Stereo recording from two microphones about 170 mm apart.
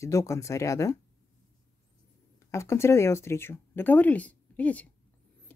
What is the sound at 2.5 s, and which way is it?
Speech, 15° left (ahead or behind).